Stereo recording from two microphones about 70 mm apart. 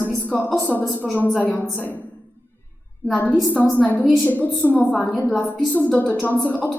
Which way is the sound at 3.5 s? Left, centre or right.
Left.